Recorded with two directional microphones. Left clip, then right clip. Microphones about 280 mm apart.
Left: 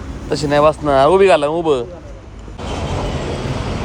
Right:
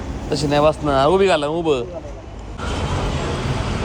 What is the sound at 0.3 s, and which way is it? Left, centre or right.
Speech, centre.